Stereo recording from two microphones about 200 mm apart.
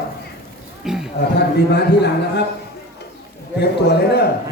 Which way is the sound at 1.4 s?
55° left (ahead or behind).